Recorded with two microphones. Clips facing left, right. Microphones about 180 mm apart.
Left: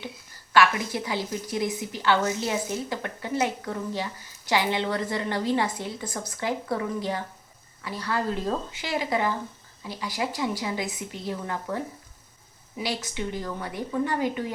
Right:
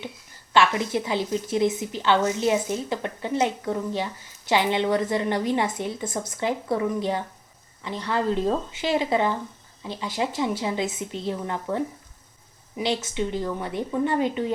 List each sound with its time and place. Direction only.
0.5 s a woman's voice: 25° right (ahead or behind)